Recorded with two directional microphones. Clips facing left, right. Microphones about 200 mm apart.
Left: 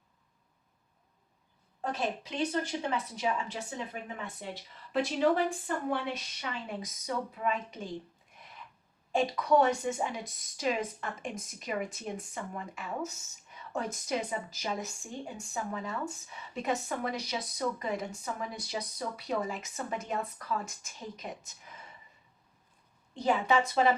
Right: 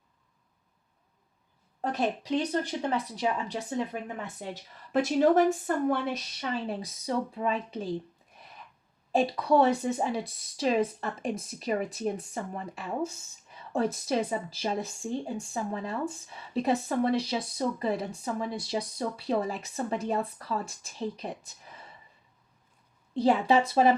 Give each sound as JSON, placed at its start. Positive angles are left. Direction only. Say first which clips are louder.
{"t": 1.8, "sound": "a woman's voice", "louder": "right 4 dB", "side_deg": -35}
{"t": 4.9, "sound": "a woman's voice", "louder": "right 4 dB", "side_deg": -45}
{"t": 9.1, "sound": "a woman's voice", "louder": "right 2 dB", "side_deg": -30}
{"t": 23.1, "sound": "a woman's voice", "louder": "right 4 dB", "side_deg": -30}